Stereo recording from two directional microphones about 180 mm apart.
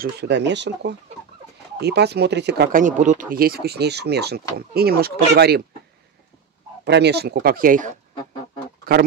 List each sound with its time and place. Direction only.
0.0 s speech: 70° right (ahead or behind)
2.8 s speech: 45° right (ahead or behind)
3.3 s speech: 55° right (ahead or behind)
6.8 s speech: 70° right (ahead or behind)